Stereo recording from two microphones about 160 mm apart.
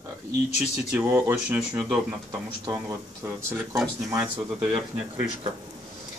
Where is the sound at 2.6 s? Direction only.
20° right (ahead or behind).